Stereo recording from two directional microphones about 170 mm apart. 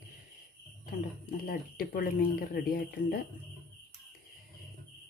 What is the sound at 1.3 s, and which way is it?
Speech, 60° left (ahead or behind).